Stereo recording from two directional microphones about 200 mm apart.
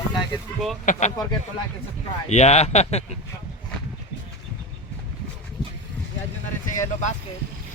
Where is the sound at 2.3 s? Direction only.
35° left (ahead or behind).